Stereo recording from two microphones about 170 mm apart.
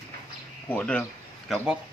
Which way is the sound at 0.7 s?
5° left (ahead or behind).